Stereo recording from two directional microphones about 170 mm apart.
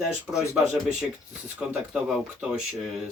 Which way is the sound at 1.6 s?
Centre (ahead or behind).